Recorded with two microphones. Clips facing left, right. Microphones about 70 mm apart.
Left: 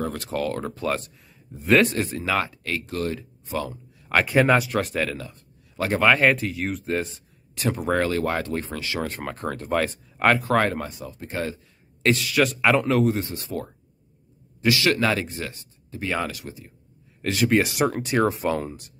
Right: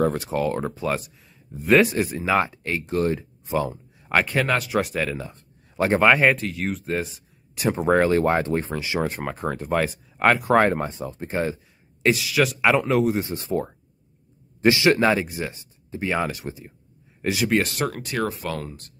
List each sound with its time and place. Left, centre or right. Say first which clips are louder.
0.1 s speech: right 3 dB; centre
2.3 s speech: right 4 dB; right
4.1 s speech: left 3 dB; centre
4.6 s speech: right 1 dB; centre
5.1 s a sound: right 2 dB; right
5.9 s speech: right 1 dB; centre
7.5 s speech: right 4 dB; centre
10.7 s speech: right 5 dB; right
12.0 s speech: even; centre
13.3 s speech: right 5 dB; right
16.3 s speech: right 4 dB; right
17.3 s speech: left 1 dB; centre
17.6 s speech: left 4 dB; centre